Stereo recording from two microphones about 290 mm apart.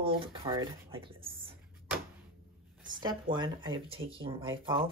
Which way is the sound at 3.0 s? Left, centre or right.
Centre.